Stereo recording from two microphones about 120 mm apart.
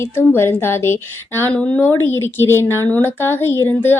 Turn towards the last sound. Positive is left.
turn(degrees=15)  # may be behind; listen again after turning